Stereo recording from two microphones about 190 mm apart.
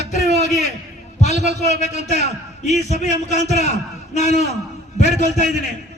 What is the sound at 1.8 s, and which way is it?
A man's voice, 35° left (ahead or behind).